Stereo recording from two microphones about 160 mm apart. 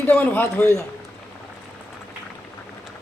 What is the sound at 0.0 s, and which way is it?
Speech, 10° left (ahead or behind).